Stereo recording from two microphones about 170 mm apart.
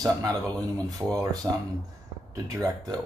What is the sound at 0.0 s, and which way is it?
Speech, 20° right (ahead or behind).